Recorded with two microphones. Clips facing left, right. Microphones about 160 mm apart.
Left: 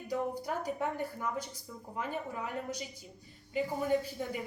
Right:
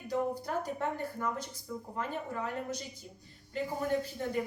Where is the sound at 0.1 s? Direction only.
10° left (ahead or behind).